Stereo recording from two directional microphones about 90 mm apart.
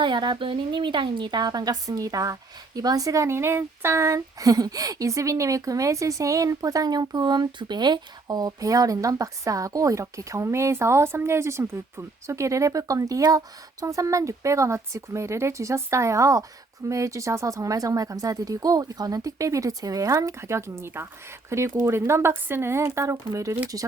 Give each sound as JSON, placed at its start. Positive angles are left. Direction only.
{"t": 0.0, "sound": "speech", "side_deg": -55}